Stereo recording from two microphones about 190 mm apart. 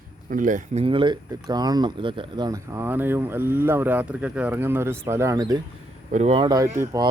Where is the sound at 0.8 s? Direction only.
25° right (ahead or behind).